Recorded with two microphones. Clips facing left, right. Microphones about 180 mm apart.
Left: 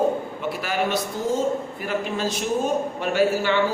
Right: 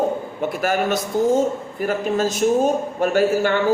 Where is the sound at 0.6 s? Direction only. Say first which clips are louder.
Right 4 dB; 45° right (ahead or behind).